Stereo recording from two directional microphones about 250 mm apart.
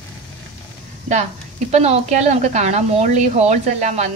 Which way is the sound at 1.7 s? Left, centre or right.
Right.